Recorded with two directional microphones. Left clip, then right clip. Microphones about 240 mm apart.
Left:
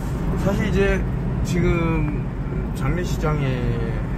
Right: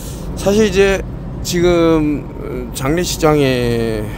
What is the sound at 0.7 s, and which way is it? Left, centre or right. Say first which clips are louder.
Speech: right 9 dB; right.